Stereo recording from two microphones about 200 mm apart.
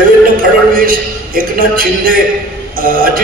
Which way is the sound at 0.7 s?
45° right (ahead or behind).